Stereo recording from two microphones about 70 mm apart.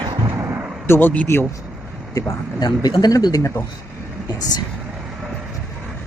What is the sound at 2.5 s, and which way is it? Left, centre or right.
Speech, left.